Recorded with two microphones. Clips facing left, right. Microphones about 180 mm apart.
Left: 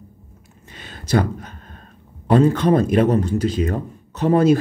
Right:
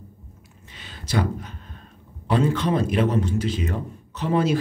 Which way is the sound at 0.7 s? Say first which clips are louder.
Left 8 dB; 50° left (ahead or behind).